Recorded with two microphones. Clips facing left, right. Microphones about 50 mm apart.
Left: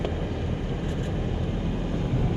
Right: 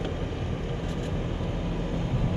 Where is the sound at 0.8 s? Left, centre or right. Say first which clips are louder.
Left 2 dB; centre.